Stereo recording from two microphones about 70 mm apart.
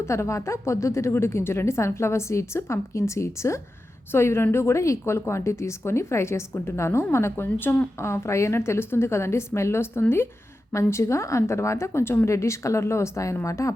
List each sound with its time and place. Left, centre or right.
0.0 s a woman's voice: left